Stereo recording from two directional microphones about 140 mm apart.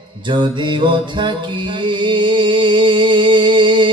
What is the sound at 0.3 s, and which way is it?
Mantra, 35° right (ahead or behind).